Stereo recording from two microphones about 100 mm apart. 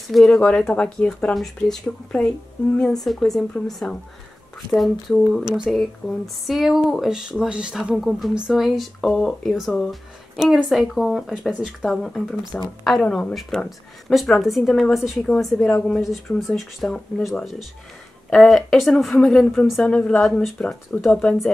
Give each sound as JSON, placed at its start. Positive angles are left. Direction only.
{"t": 0.1, "sound": "speech", "side_deg": 5}
{"t": 4.7, "sound": "speech", "side_deg": 0}
{"t": 20.5, "sound": "speech", "side_deg": 15}
{"t": 21.0, "sound": "speech", "side_deg": 5}